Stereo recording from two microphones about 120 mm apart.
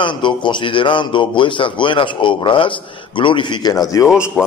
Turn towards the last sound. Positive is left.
turn(degrees=10)  # may be behind; listen again after turning